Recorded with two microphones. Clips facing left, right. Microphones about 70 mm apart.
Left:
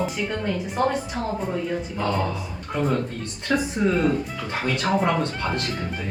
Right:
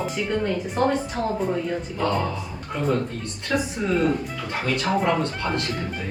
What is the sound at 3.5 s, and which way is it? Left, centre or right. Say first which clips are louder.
A woman's voice: left 2 dB; centre.